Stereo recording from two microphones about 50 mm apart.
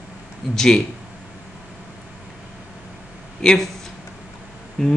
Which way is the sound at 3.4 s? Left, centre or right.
Centre.